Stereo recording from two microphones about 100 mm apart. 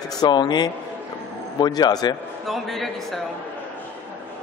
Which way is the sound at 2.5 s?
Centre (ahead or behind).